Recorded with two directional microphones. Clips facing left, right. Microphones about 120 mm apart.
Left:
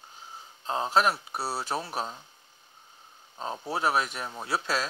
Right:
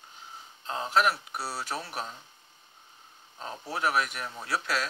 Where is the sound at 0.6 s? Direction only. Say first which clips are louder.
Left 1 dB; 30° left (ahead or behind).